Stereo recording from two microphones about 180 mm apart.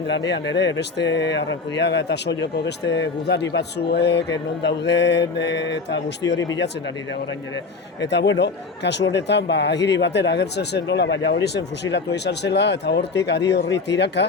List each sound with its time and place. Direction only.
0.1 s speech: 75° left (ahead or behind)
8.0 s speech: 75° left (ahead or behind)